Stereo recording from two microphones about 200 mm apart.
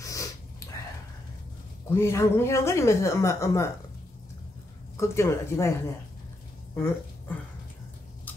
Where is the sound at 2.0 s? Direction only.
10° left (ahead or behind).